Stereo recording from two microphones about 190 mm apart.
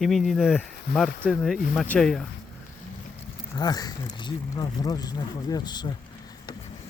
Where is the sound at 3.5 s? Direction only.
20° left (ahead or behind).